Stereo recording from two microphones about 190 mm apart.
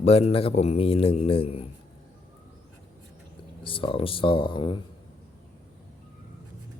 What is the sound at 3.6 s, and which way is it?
Speech, 25° left (ahead or behind).